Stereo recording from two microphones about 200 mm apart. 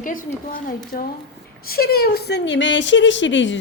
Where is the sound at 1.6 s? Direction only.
50° left (ahead or behind); by 3.6 s 65° left (ahead or behind).